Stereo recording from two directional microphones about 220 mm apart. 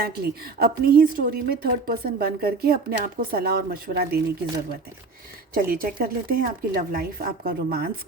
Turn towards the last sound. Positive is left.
turn(degrees=-45)  # may be behind; listen again after turning